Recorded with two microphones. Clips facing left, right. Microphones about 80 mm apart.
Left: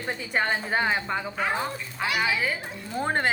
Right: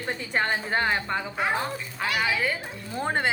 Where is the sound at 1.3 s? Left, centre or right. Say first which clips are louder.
Right 2 dB; centre.